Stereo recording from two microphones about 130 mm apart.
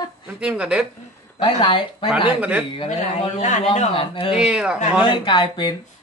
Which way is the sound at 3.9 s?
45° left (ahead or behind).